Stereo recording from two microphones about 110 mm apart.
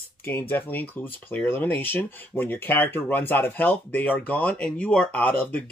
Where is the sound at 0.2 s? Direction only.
20° left (ahead or behind).